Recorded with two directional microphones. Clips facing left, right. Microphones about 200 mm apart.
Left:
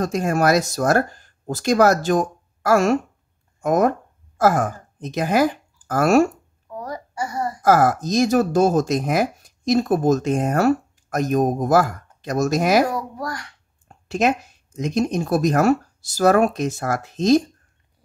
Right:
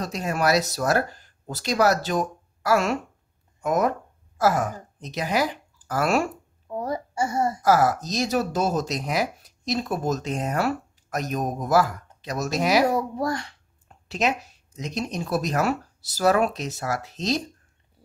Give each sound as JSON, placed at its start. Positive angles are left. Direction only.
{"t": 0.0, "sound": "speech", "side_deg": 50}
{"t": 6.7, "sound": "a child's voice", "side_deg": -25}
{"t": 7.6, "sound": "speech", "side_deg": 50}
{"t": 12.9, "sound": "speech", "side_deg": -25}
{"t": 13.8, "sound": "speech", "side_deg": 50}